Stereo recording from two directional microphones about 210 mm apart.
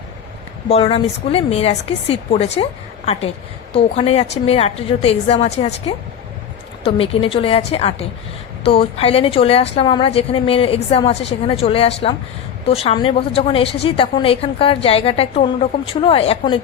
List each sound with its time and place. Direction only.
0.7 s a woman's voice: 25° left (ahead or behind)
3.7 s a woman's voice: 30° left (ahead or behind)